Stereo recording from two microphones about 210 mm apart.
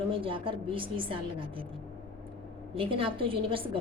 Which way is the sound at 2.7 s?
25° right (ahead or behind).